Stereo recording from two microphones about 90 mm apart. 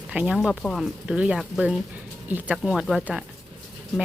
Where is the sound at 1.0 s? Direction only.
10° right (ahead or behind).